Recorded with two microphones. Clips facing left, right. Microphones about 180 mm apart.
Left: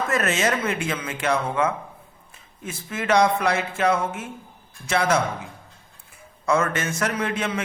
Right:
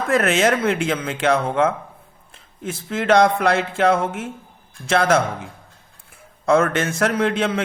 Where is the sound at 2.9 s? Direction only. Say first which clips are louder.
Right 4 dB; 65° right (ahead or behind).